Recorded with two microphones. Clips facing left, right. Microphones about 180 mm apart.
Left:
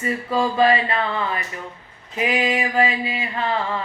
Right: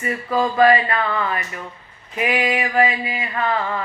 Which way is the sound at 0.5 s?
25° left (ahead or behind).